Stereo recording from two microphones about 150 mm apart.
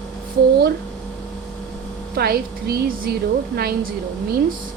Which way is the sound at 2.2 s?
90° right.